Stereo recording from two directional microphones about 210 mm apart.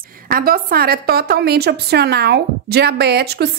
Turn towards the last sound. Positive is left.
turn(degrees=-50)  # may be behind; listen again after turning